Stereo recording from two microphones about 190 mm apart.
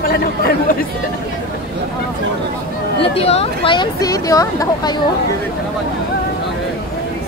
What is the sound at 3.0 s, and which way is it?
Speech, 30° left (ahead or behind).